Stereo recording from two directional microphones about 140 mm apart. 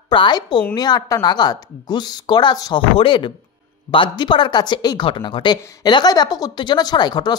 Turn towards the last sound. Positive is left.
turn(degrees=30)  # may be behind; listen again after turning